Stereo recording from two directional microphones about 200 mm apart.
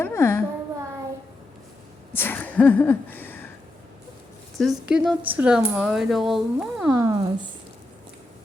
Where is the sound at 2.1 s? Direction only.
10° left (ahead or behind).